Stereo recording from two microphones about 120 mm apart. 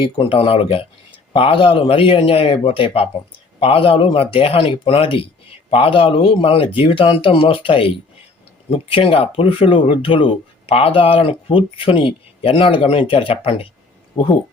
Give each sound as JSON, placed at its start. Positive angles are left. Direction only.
{"t": 0.0, "sound": "speech", "side_deg": 50}